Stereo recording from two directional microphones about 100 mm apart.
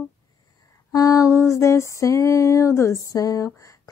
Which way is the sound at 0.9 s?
35° left (ahead or behind).